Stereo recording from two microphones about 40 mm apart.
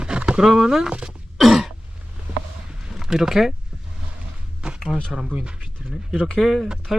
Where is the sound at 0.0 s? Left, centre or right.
Right.